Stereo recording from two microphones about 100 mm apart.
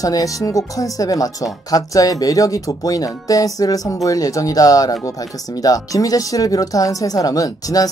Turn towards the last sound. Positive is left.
turn(degrees=35)  # may be behind; listen again after turning